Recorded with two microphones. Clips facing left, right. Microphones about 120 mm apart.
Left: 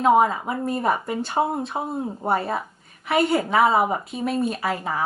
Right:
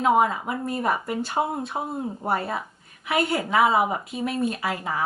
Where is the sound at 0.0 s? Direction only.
Centre (ahead or behind).